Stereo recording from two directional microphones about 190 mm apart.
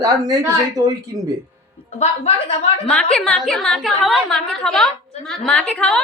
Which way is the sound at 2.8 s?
5° left (ahead or behind).